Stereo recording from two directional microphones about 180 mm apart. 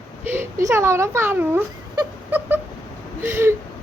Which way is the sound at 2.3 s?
10° right (ahead or behind).